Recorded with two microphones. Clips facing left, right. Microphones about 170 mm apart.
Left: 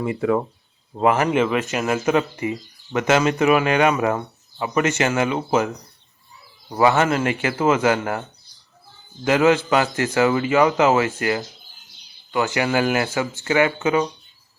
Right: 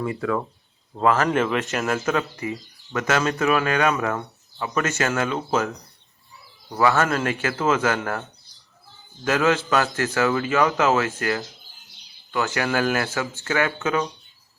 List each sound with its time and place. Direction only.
0.0 s speech: 20° left (ahead or behind)
1.3 s speech: 5° left (ahead or behind)
2.0 s speech: 20° left (ahead or behind)
6.7 s speech: 15° left (ahead or behind)
9.2 s speech: 15° left (ahead or behind)